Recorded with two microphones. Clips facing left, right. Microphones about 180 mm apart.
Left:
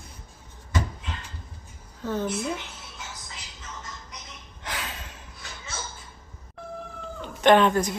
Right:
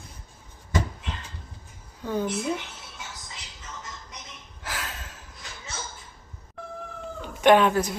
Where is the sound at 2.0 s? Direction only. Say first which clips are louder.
Right 1 dB; 15° right (ahead or behind).